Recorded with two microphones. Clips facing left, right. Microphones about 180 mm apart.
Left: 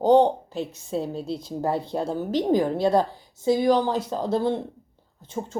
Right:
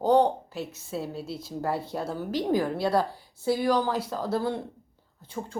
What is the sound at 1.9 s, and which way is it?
A woman's voice, 25° left (ahead or behind).